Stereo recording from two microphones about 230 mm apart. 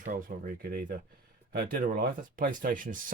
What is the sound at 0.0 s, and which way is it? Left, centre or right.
Speech, right.